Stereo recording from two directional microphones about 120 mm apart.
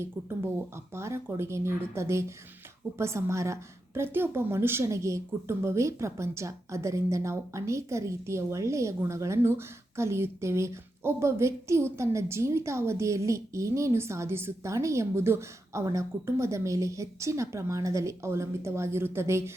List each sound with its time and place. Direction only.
0.9 s a woman's voice: 25° right (ahead or behind)